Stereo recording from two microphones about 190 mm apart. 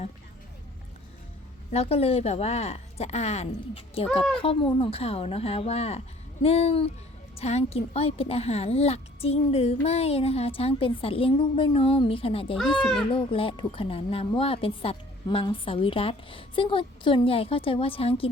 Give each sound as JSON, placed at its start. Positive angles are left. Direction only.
{"t": 1.7, "sound": "a woman's voice", "side_deg": 30}
{"t": 12.8, "sound": "speech", "side_deg": 0}
{"t": 13.1, "sound": "a woman's voice", "side_deg": 30}